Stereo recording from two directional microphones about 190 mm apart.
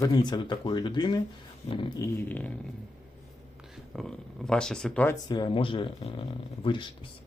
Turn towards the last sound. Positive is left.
turn(degrees=25)  # may be behind; listen again after turning